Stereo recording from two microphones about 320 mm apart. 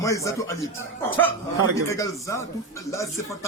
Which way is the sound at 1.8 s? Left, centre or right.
Centre.